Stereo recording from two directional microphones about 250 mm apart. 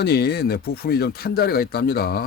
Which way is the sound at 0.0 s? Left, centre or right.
Left.